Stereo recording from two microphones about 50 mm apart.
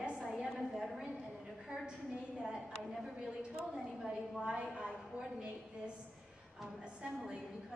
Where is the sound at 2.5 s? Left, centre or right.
Centre.